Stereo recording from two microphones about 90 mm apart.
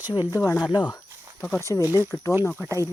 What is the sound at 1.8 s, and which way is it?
Speech, 25° right (ahead or behind).